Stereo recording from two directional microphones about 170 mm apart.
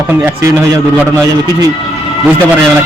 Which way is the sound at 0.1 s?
10° right (ahead or behind).